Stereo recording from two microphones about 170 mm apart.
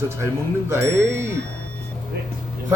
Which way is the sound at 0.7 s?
15° right (ahead or behind).